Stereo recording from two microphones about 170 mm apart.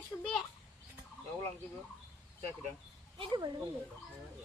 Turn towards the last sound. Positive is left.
turn(degrees=-25)  # may be behind; listen again after turning